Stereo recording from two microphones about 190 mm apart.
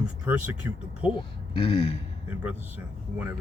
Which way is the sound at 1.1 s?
25° left (ahead or behind).